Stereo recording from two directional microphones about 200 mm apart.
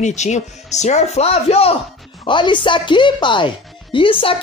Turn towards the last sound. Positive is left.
turn(degrees=25)  # may be behind; listen again after turning